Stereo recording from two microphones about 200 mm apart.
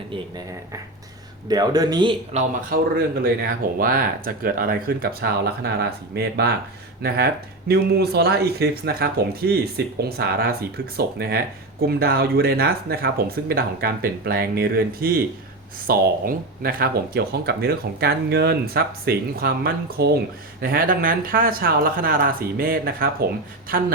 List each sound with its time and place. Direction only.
0.1 s speech: 20° right (ahead or behind)
2.3 s speech: 40° right (ahead or behind); by 6.5 s 55° right (ahead or behind)
7.7 s speech: 55° right (ahead or behind)